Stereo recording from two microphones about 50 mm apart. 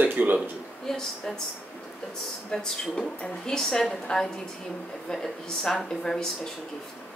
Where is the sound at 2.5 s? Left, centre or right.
Centre.